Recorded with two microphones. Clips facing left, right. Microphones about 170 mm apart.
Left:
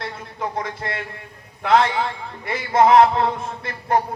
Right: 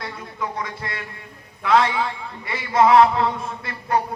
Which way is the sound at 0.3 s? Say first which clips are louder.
Left 2 dB; 50° left (ahead or behind).